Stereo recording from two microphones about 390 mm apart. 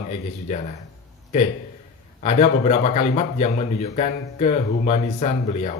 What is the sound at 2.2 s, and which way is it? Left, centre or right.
A man's voice, centre.